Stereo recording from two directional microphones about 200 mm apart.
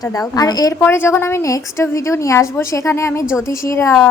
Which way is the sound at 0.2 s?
20° left (ahead or behind).